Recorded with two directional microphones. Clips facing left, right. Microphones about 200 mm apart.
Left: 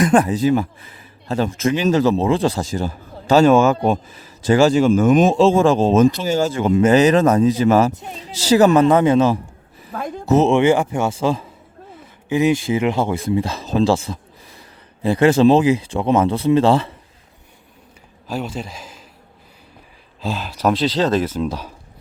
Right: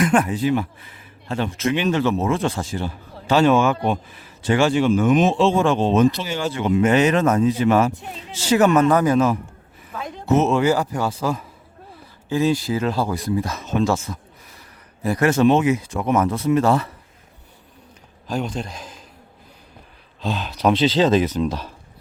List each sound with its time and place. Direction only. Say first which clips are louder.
0.0 s speech: left 4 dB; 35° left (ahead or behind)
18.3 s a man's voice: even; 5° left (ahead or behind)
20.2 s speech: even; centre (ahead or behind)